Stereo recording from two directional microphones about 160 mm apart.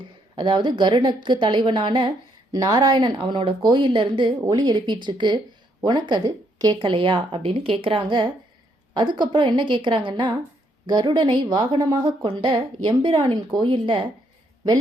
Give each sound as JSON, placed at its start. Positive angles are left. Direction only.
{"t": 0.3, "sound": "a woman's voice", "side_deg": -30}